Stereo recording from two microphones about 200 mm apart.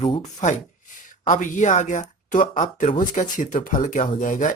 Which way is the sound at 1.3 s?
40° left (ahead or behind).